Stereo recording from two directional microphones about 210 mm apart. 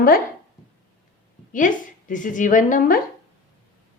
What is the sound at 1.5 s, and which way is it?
Speech, 40° left (ahead or behind).